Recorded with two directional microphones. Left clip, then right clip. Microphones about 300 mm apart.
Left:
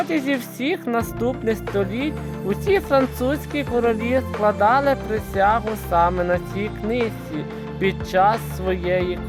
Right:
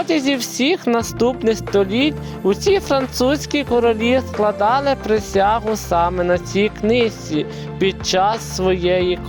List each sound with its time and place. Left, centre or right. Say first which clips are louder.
0.1 s speech: right 5 dB; centre
7.3 s music: right 6 dB; centre